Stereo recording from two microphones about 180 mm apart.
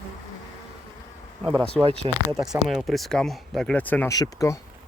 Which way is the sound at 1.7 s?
Centre (ahead or behind).